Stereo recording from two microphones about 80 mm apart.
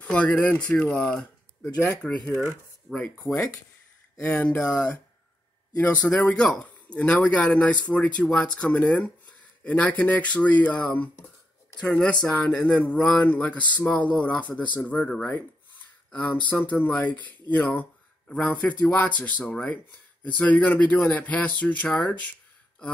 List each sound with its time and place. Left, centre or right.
0.0 s speech: centre
16.4 s speech: centre